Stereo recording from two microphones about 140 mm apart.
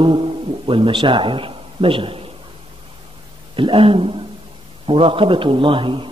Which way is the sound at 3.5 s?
40° right (ahead or behind).